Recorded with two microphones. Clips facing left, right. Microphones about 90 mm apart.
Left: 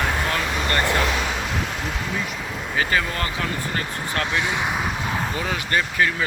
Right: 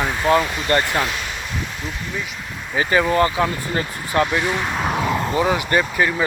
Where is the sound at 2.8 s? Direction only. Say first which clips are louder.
Right 7 dB; 20° right (ahead or behind).